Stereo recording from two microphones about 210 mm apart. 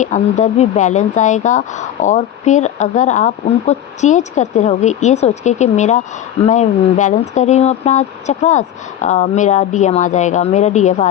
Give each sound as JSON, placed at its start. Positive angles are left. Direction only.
{"t": 0.0, "sound": "speech", "side_deg": 35}